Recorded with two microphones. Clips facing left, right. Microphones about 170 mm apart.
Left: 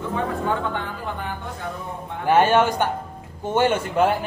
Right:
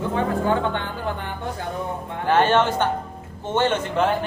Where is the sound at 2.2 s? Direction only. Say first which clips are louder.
Left 1 dB; 10° left (ahead or behind).